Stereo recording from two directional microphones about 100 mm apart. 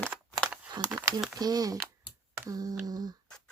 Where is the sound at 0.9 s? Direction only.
35° right (ahead or behind).